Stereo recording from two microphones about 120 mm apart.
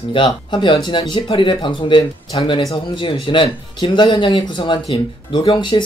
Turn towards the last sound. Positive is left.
turn(degrees=50)  # may be behind; listen again after turning